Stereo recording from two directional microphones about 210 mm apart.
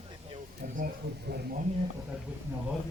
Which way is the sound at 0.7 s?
45° right (ahead or behind).